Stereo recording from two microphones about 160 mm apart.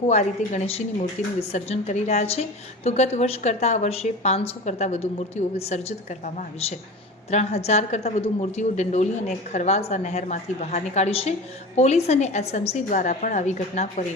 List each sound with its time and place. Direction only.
0.1 s a woman's voice: 45° left (ahead or behind)